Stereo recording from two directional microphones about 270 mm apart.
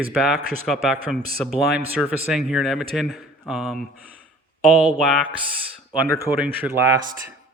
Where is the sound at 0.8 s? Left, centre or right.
Centre.